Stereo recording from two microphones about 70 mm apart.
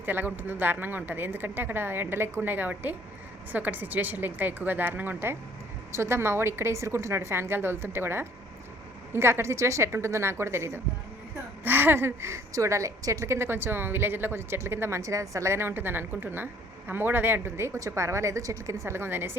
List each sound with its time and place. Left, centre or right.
0.0 s a woman's voice: right